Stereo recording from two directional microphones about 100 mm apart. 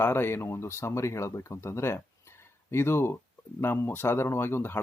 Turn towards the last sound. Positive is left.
turn(degrees=25)  # may be behind; listen again after turning